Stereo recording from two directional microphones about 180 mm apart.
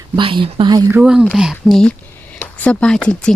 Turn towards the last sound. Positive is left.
turn(degrees=5)  # may be behind; listen again after turning